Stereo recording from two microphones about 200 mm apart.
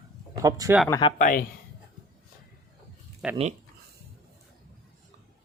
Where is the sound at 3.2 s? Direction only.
5° right (ahead or behind).